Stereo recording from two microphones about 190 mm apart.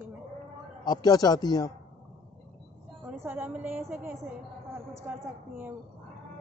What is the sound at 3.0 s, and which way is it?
A woman's voice, 10° right (ahead or behind).